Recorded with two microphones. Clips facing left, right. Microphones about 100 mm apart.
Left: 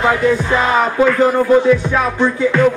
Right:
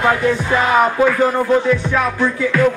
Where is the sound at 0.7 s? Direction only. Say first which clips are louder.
Even; 5° right (ahead or behind).